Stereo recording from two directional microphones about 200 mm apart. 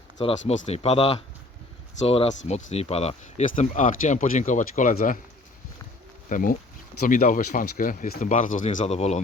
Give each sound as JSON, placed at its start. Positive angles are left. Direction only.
{"t": 0.2, "sound": "speech", "side_deg": 30}
{"t": 6.2, "sound": "speech", "side_deg": 40}